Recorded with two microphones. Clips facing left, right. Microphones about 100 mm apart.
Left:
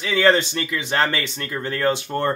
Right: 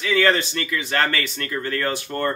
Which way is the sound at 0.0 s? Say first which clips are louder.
Left 2 dB; 25° left (ahead or behind).